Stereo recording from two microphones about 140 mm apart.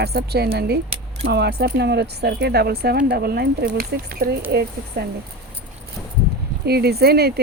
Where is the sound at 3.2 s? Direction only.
90° right.